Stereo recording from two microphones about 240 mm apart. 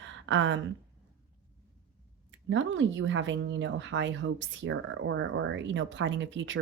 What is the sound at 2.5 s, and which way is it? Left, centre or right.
A woman's voice, right.